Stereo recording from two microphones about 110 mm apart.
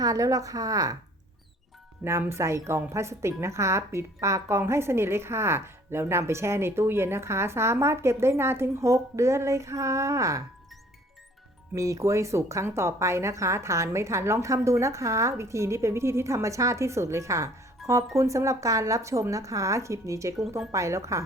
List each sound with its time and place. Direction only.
0.0 s a woman's voice: 30° right (ahead or behind)
2.0 s speech: 25° right (ahead or behind)
11.7 s speech: 30° right (ahead or behind)